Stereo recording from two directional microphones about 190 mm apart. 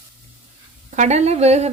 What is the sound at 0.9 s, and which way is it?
Speech, 35° right (ahead or behind).